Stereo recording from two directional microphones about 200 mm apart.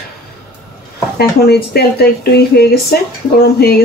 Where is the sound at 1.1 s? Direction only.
50° left (ahead or behind).